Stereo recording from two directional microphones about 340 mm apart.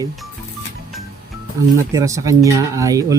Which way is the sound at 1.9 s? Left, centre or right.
Centre.